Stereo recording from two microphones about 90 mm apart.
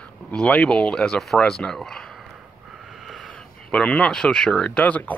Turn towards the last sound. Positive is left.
turn(degrees=15)  # may be behind; listen again after turning